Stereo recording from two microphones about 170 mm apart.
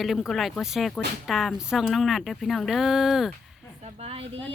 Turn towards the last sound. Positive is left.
turn(degrees=-35)  # may be behind; listen again after turning